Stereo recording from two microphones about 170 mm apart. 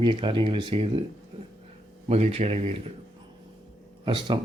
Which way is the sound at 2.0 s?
40° right (ahead or behind).